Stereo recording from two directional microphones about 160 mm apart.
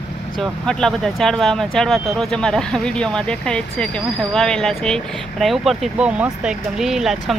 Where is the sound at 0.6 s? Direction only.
5° left (ahead or behind).